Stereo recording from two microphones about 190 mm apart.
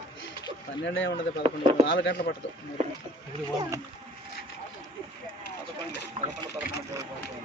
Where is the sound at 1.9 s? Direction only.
65° left (ahead or behind).